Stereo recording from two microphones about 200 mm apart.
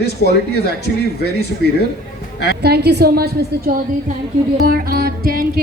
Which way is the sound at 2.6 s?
55° right (ahead or behind).